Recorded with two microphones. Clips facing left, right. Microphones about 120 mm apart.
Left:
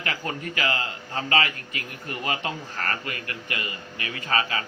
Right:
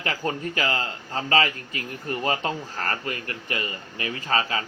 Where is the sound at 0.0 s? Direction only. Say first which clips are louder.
Right 3 dB; 30° right (ahead or behind).